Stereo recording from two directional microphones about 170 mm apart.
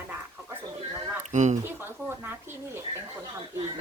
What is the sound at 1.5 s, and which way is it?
Speech, 10° right (ahead or behind).